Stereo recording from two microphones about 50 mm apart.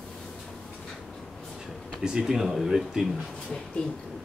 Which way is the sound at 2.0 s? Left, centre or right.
Centre.